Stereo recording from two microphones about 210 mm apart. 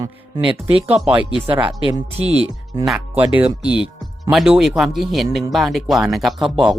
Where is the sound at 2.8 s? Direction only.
5° right (ahead or behind).